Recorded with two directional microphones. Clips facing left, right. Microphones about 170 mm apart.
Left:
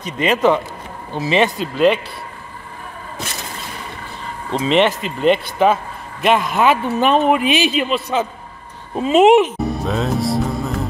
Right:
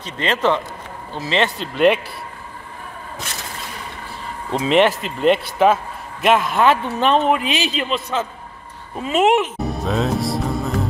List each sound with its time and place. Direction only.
0.0 s speech: 10° left (ahead or behind)
4.5 s speech: 5° right (ahead or behind); by 9.5 s 20° left (ahead or behind)
9.6 s music: centre (ahead or behind)